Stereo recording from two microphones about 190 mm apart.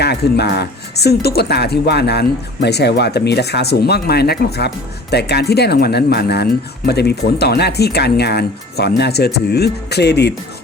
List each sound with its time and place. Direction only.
0.0 s speech: 60° left (ahead or behind)